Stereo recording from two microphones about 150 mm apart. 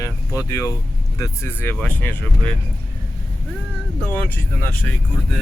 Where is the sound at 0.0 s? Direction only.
20° left (ahead or behind).